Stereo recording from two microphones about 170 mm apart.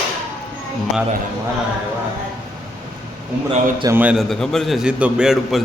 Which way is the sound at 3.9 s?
5° right (ahead or behind).